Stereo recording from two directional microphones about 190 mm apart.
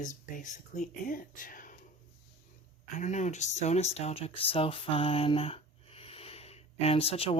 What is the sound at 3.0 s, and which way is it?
Speech, 40° left (ahead or behind).